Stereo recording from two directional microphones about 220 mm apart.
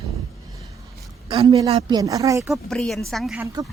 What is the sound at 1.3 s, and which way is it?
Speech, 25° right (ahead or behind).